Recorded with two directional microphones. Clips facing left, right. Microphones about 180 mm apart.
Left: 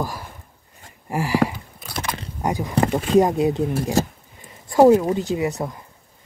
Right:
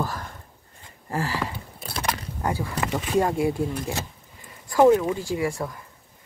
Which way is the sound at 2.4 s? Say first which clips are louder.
Left 6 dB; 15° left (ahead or behind).